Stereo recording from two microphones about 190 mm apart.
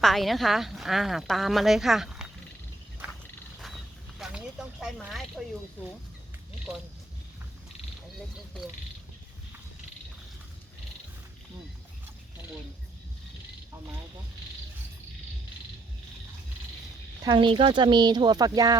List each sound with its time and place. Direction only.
0.0 s speech: centre (ahead or behind)
3.0 s wild animals: 5° right (ahead or behind)
4.2 s speech: 5° right (ahead or behind)
17.2 s speech: 25° right (ahead or behind)